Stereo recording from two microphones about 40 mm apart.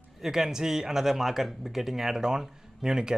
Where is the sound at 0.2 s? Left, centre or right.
Centre.